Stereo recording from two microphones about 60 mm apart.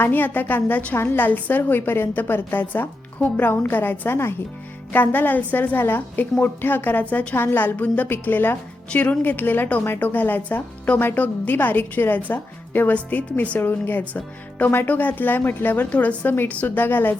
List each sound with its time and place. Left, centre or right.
0.0 s a woman's voice: left
7.3 s a woman's voice: left
13.6 s a woman's voice: left